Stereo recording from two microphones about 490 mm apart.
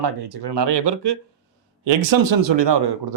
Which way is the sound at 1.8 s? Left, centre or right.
Right.